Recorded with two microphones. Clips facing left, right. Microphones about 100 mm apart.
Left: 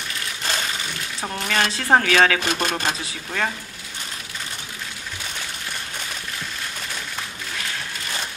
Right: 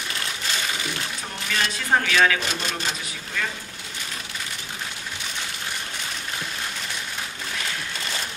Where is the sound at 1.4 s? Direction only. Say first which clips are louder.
Left 4 dB; 50° left (ahead or behind).